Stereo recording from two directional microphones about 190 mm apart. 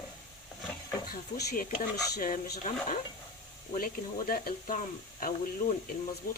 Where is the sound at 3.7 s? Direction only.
50° left (ahead or behind).